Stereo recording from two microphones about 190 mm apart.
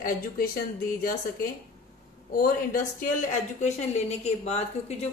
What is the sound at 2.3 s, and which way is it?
A woman's voice, 45° left (ahead or behind).